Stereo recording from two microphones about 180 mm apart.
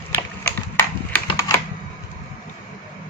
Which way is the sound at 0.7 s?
15° left (ahead or behind).